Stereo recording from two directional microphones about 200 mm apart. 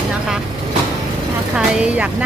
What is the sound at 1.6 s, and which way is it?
Speech, 5° right (ahead or behind).